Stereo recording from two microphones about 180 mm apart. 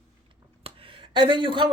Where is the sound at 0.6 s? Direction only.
30° right (ahead or behind).